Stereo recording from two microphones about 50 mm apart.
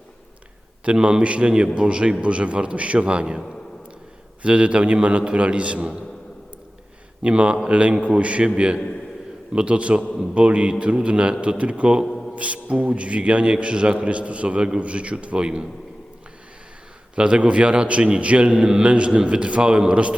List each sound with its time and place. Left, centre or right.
0.9 s a man's voice: centre
4.4 s a man's voice: right
7.2 s a man's voice: right
12.0 s music: centre
12.4 s a man's voice: right
17.2 s a man's voice: right